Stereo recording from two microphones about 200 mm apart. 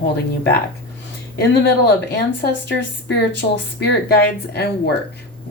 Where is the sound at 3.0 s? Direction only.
60° left (ahead or behind).